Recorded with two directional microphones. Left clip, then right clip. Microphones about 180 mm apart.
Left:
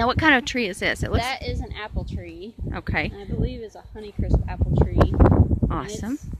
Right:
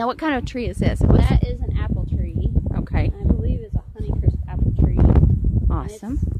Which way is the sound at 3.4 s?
45° left (ahead or behind).